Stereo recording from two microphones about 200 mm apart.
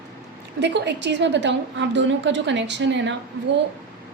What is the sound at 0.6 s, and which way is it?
A woman's voice, 60° right (ahead or behind).